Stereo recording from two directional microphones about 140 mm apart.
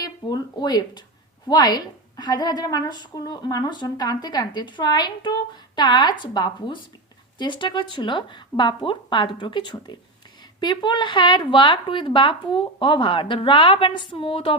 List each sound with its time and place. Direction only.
0.0 s a woman's voice: 30° left (ahead or behind)